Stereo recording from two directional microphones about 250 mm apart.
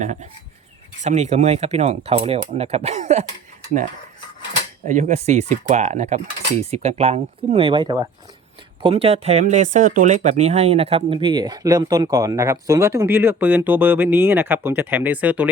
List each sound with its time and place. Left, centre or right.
0.0 s speech: right
4.9 s speech: right; by 15.4 s centre